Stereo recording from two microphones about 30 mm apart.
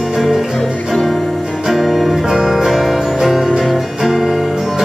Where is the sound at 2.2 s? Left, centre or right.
Centre.